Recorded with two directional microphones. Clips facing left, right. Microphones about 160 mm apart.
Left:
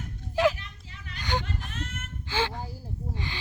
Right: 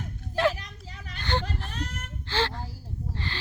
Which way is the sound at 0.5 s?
40° right (ahead or behind).